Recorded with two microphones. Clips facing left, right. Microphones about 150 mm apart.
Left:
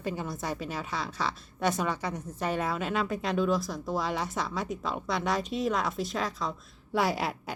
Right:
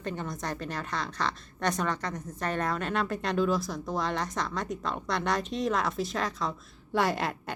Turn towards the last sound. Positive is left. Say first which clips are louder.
# even
turn(degrees=5)  # may be behind; listen again after turning